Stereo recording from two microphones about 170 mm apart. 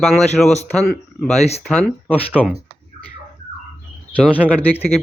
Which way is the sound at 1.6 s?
Centre (ahead or behind).